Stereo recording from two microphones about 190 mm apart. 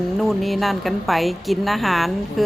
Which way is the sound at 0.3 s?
Centre (ahead or behind).